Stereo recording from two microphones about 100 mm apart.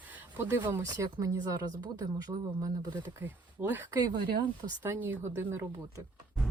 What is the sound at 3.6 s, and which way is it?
A woman's voice, 20° right (ahead or behind).